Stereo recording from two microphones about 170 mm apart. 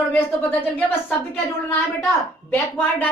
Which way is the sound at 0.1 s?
10° left (ahead or behind).